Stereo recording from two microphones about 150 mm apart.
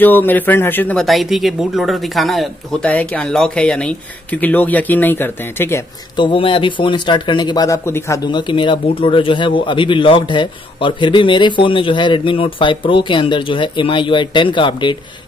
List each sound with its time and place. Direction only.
0.0 s speech: 10° left (ahead or behind)
1.0 s speech: centre (ahead or behind); by 5.9 s 15° left (ahead or behind)
6.1 s speech: 35° left (ahead or behind)
8.3 s speech: 30° left (ahead or behind)